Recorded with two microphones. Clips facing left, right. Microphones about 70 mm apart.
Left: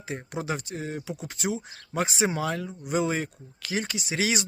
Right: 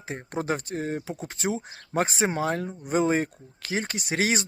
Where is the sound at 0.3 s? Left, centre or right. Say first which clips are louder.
Right 5 dB; right.